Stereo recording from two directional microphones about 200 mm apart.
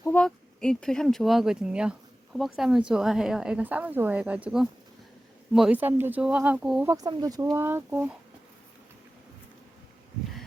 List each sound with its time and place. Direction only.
0.0 s a woman's voice: 5° left (ahead or behind)
6.9 s speech: 20° right (ahead or behind)